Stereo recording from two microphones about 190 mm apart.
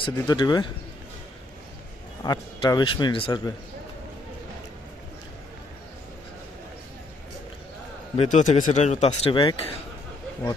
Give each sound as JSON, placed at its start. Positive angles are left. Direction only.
{"t": 0.0, "sound": "a man's voice", "side_deg": 25}
{"t": 2.2, "sound": "a man's voice", "side_deg": 20}
{"t": 8.1, "sound": "speech", "side_deg": 35}